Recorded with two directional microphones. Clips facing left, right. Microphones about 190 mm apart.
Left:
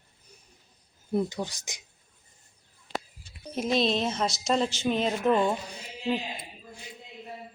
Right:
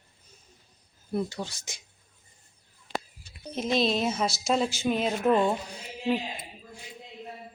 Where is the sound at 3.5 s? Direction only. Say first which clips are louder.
Even; centre (ahead or behind).